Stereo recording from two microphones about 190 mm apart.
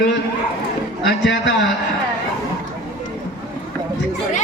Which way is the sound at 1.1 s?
65° left (ahead or behind).